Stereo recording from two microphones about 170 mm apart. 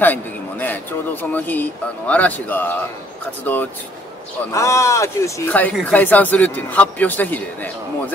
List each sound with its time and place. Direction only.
0.0 s a man's voice: 10° left (ahead or behind)